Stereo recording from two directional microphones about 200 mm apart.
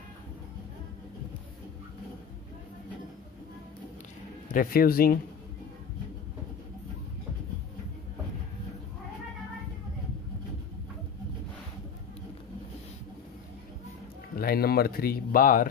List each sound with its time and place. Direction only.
4.5 s speech: 45° left (ahead or behind)
14.3 s speech: 50° left (ahead or behind)